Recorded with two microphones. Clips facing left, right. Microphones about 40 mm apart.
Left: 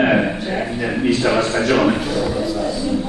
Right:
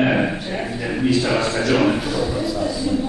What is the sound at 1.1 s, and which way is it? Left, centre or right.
Speech, left.